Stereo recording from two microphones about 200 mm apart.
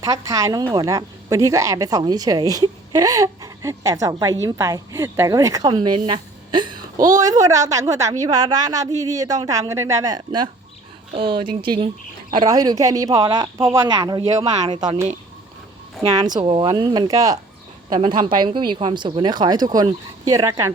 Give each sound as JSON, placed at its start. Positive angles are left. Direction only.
{"t": 0.0, "sound": "a woman's voice", "side_deg": -15}
{"t": 16.0, "sound": "a woman's voice", "side_deg": -20}